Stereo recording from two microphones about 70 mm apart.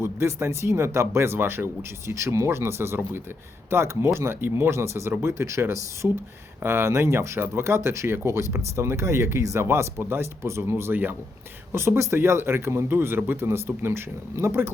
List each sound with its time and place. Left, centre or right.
0.0 s speech: right